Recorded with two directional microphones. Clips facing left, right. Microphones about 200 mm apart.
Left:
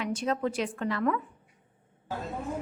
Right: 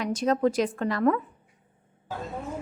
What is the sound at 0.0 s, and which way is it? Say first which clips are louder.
A woman's voice: right 5 dB; 40° right (ahead or behind).